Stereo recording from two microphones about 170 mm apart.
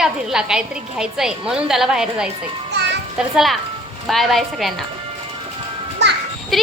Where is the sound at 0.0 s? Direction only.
5° right (ahead or behind).